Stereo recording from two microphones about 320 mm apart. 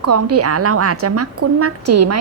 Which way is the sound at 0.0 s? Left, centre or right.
Right.